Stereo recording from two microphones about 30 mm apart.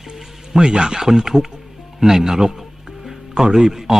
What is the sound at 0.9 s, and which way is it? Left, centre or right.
Speech, centre.